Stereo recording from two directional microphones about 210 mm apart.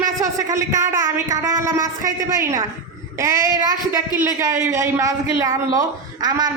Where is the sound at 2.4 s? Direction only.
15° right (ahead or behind).